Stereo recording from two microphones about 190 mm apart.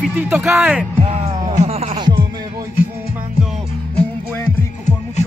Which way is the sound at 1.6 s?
35° right (ahead or behind).